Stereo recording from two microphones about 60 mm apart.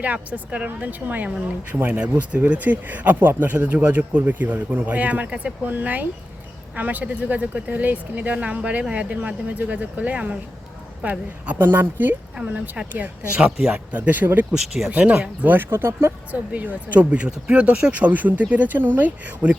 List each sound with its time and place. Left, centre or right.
0.0 s speech: right
12.4 s speech: right
13.9 s speech: right
14.5 s speech: centre
15.4 s speech: right
16.3 s speech: right